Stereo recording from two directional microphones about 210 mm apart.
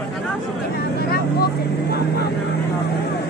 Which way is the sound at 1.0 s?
50° left (ahead or behind).